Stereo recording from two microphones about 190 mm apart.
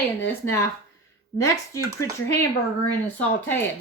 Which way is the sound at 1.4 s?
15° left (ahead or behind).